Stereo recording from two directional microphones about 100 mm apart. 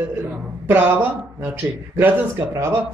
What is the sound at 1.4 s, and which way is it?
A man's voice, 20° right (ahead or behind).